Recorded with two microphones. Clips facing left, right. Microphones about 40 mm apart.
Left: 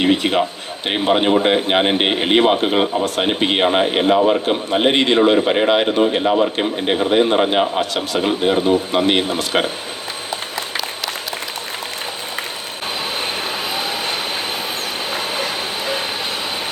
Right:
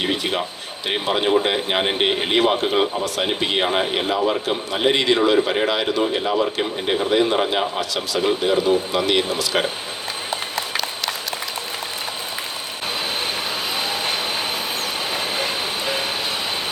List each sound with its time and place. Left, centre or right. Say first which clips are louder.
0.0 s speech: left 6 dB; left
13.7 s vehicle: left 1 dB; centre